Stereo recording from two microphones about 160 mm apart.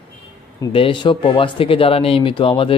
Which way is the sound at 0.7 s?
30° left (ahead or behind).